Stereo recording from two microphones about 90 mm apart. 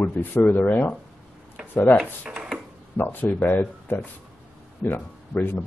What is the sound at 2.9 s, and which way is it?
Speech, 20° left (ahead or behind).